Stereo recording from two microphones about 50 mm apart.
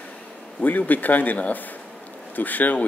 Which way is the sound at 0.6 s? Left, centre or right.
Left.